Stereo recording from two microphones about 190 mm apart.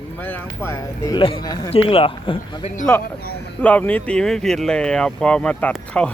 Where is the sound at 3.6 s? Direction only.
5° left (ahead or behind).